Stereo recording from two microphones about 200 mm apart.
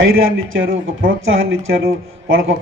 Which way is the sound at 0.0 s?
80° right.